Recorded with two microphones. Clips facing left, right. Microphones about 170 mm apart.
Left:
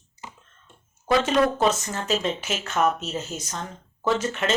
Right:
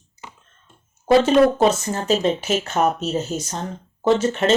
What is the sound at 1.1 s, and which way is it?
Speech, 35° right (ahead or behind).